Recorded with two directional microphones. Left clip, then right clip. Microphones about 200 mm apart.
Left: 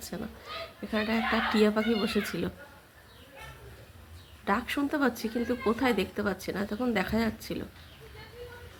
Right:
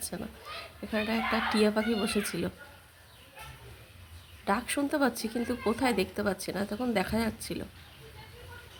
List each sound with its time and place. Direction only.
0.1 s speech: 10° right (ahead or behind)
4.4 s speech: 15° right (ahead or behind)